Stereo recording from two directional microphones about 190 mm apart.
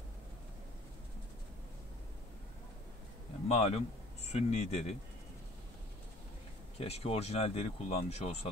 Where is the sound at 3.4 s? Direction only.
35° left (ahead or behind).